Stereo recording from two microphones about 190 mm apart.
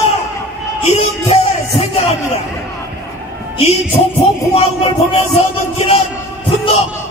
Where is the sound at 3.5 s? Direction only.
30° left (ahead or behind).